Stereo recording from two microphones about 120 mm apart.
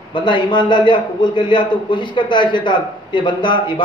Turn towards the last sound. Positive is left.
turn(degrees=40)  # may be behind; listen again after turning